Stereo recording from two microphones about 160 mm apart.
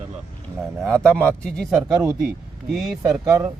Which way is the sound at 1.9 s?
20° right (ahead or behind).